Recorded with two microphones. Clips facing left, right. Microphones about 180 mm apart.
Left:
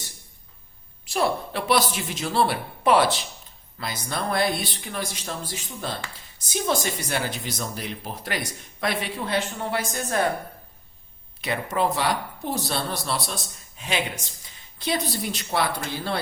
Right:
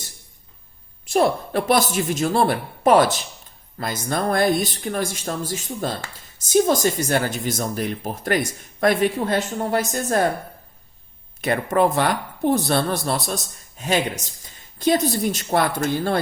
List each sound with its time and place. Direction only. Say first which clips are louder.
1.0 s speech: right 5 dB; 45° right (ahead or behind)
11.3 s speech: right 6 dB; 50° right (ahead or behind)